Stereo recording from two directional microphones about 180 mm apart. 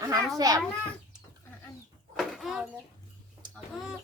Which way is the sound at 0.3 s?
20° right (ahead or behind).